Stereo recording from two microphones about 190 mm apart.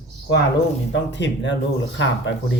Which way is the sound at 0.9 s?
70° left (ahead or behind).